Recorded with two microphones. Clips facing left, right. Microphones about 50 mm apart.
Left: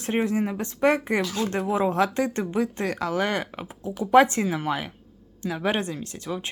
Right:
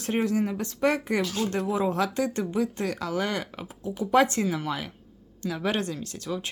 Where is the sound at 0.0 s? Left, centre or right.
Left.